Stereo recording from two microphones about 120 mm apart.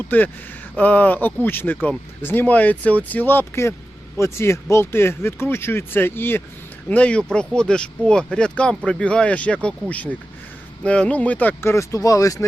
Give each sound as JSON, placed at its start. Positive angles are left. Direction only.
{"t": 0.0, "sound": "speech", "side_deg": 15}